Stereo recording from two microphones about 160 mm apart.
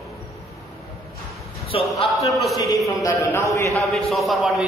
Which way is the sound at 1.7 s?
35° left (ahead or behind).